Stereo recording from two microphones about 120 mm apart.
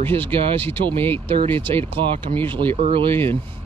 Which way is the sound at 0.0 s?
20° left (ahead or behind).